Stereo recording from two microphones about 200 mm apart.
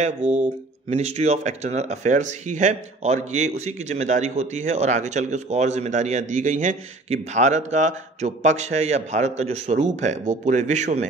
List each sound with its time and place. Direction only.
0.4 s a man's voice: 35° right (ahead or behind)